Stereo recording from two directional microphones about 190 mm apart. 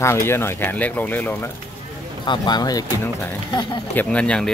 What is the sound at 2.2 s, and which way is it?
Speech, 25° left (ahead or behind).